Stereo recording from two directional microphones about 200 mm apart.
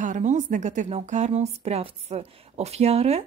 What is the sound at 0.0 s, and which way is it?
Speech, 40° right (ahead or behind).